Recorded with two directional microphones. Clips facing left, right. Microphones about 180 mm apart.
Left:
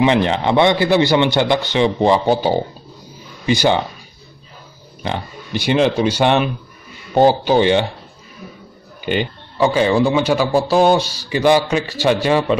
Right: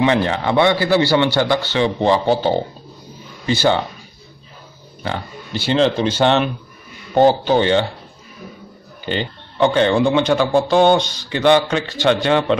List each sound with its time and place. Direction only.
0.0 s speech: 20° left (ahead or behind)
5.0 s speech: 15° left (ahead or behind)
9.0 s speech: 15° left (ahead or behind)